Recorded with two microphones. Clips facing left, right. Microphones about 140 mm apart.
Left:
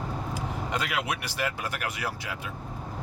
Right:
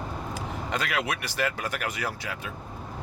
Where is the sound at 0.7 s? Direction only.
10° left (ahead or behind).